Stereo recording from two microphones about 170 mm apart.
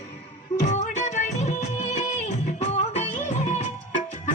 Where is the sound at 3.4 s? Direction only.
45° left (ahead or behind).